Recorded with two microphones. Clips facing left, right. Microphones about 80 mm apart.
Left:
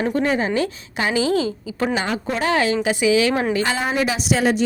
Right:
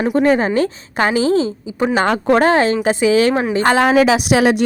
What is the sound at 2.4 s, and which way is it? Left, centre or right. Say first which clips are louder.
Speech: right 6 dB; right.